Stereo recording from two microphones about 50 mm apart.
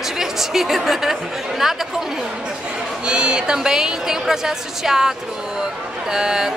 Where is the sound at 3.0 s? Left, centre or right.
Centre.